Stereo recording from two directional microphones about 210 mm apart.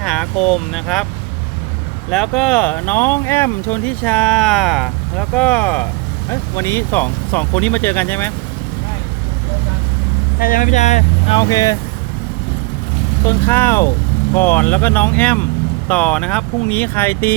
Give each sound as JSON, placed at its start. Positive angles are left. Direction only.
{"t": 0.0, "sound": "vehicle", "side_deg": 5}
{"t": 0.4, "sound": "speech", "side_deg": 0}
{"t": 2.0, "sound": "speech", "side_deg": 0}
{"t": 10.4, "sound": "speech", "side_deg": 40}
{"t": 11.3, "sound": "speech", "side_deg": 15}
{"t": 13.2, "sound": "speech", "side_deg": 10}